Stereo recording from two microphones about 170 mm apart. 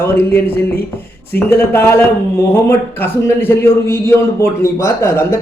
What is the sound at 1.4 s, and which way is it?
Speech, 15° left (ahead or behind).